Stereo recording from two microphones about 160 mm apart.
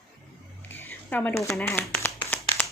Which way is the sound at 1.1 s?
15° left (ahead or behind).